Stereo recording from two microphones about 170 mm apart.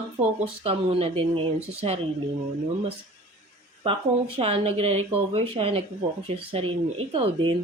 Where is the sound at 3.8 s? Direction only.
35° right (ahead or behind).